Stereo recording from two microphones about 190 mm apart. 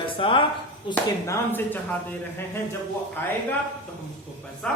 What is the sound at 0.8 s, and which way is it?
A man's voice, 15° left (ahead or behind).